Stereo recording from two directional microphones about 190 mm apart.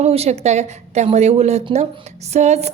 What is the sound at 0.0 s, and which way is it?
A woman's voice, 35° right (ahead or behind).